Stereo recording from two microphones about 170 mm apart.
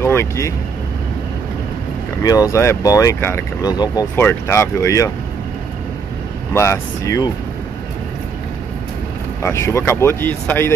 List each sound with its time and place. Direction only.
0.0 s speech: 15° left (ahead or behind)
2.2 s speech: 20° left (ahead or behind)
6.5 s speech: 15° left (ahead or behind)
9.4 s speech: 15° left (ahead or behind)